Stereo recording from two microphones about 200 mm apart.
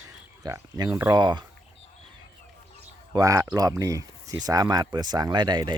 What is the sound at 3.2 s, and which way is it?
Speech, 15° right (ahead or behind).